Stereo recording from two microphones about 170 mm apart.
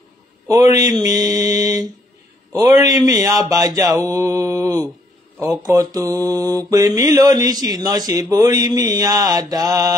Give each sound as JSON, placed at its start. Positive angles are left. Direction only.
{"t": 0.5, "sound": "mantra", "side_deg": -20}